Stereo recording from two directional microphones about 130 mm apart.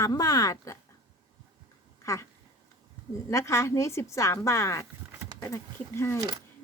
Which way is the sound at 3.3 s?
20° left (ahead or behind).